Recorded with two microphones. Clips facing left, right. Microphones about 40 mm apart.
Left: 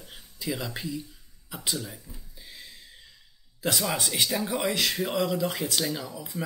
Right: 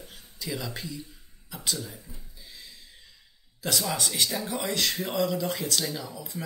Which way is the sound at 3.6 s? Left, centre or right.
Centre.